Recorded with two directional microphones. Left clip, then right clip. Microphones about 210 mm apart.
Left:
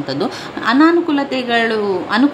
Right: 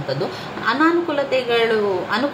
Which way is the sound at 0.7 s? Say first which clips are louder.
Left 5 dB; 40° left (ahead or behind).